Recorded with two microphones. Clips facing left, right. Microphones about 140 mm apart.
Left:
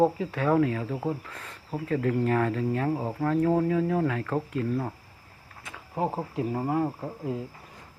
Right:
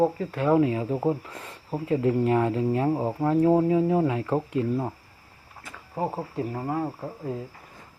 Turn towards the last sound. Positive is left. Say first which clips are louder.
# even
turn(degrees=0)  # may be behind; listen again after turning